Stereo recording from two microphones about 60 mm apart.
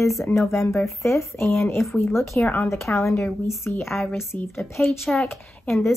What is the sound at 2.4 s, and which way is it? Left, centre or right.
Speech, left.